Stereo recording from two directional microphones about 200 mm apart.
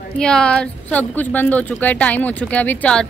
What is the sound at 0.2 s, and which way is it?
A woman's voice, 5° left (ahead or behind).